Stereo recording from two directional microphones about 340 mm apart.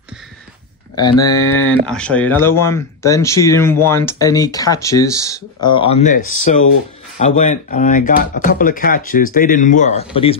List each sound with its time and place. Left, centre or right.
1.4 s speech: centre